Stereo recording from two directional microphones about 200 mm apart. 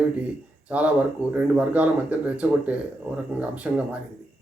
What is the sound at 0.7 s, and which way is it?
Speech, 5° right (ahead or behind).